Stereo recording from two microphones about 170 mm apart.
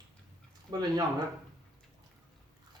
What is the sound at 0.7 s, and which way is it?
Speech, 25° right (ahead or behind).